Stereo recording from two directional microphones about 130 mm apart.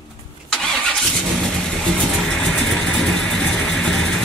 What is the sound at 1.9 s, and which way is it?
Vehicle, 5° left (ahead or behind).